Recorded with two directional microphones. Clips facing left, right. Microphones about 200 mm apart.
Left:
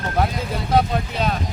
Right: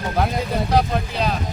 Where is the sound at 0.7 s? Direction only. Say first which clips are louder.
Left 2 dB; centre (ahead or behind).